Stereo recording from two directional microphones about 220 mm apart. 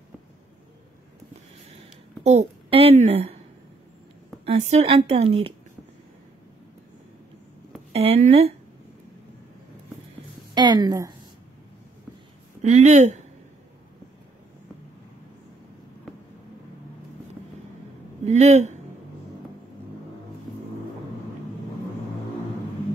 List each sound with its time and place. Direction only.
1.8 s a sound: 30° right (ahead or behind)
4.5 s a woman's voice: 30° right (ahead or behind)
7.9 s a woman's voice: 25° right (ahead or behind)
10.5 s a woman's voice: 20° right (ahead or behind)
12.6 s speech: 30° right (ahead or behind)
18.2 s speech: 30° right (ahead or behind)